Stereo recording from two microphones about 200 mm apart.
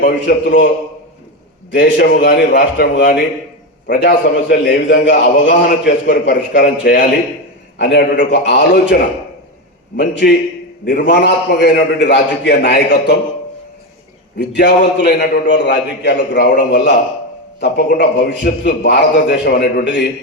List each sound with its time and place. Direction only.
0.1 s a man's voice: 55° left (ahead or behind)
1.7 s a man's voice: 60° left (ahead or behind)
10.0 s a man's voice: 60° left (ahead or behind)
14.3 s a man's voice: 55° left (ahead or behind)